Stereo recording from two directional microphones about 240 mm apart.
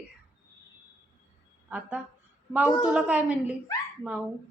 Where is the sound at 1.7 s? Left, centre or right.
Centre.